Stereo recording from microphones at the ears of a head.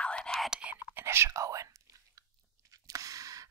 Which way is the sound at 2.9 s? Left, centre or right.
Right.